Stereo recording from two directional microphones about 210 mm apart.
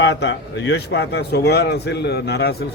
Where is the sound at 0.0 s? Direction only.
60° left (ahead or behind).